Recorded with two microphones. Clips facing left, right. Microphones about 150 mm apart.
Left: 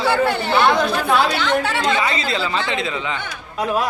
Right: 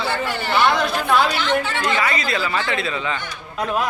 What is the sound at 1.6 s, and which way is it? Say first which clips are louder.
Speech: left 3 dB; 70° left (ahead or behind).